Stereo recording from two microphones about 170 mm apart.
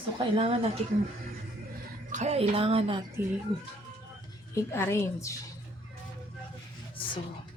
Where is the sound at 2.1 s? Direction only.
40° right (ahead or behind).